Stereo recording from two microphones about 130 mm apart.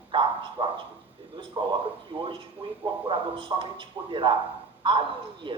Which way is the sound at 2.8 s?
40° right (ahead or behind).